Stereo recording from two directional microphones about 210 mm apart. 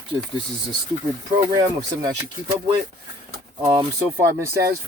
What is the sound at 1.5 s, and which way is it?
Speech, 20° right (ahead or behind).